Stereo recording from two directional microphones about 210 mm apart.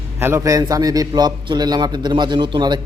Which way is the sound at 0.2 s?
10° right (ahead or behind).